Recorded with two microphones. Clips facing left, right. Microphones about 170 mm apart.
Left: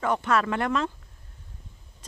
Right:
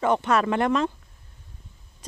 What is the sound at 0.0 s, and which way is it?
Speech, 25° right (ahead or behind).